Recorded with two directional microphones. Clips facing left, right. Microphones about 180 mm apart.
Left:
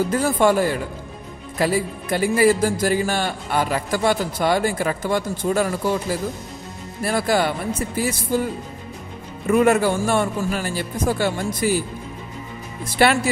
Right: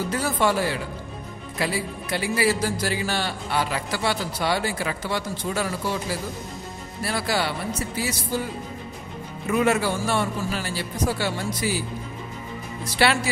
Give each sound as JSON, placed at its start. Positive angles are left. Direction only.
{"t": 0.1, "sound": "a man's voice", "side_deg": 50}
{"t": 9.5, "sound": "a man's voice", "side_deg": 50}
{"t": 12.8, "sound": "a man's voice", "side_deg": 50}